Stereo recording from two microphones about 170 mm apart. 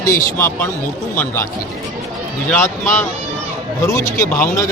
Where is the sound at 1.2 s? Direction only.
15° left (ahead or behind).